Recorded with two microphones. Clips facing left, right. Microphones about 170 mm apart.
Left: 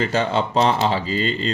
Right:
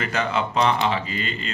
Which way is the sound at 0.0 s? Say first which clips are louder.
Left 4 dB; 30° left (ahead or behind).